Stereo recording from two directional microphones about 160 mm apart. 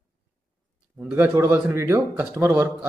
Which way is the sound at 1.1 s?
15° right (ahead or behind).